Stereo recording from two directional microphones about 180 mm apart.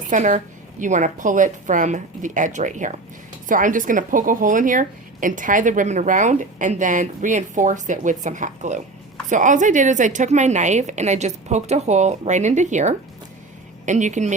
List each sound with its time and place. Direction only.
0.1 s a woman's voice: 45° right (ahead or behind)